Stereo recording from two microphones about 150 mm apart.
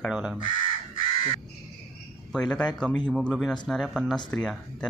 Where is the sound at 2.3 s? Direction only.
5° left (ahead or behind).